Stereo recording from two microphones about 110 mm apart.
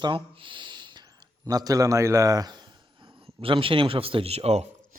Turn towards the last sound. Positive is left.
turn(degrees=-75)  # may be behind; listen again after turning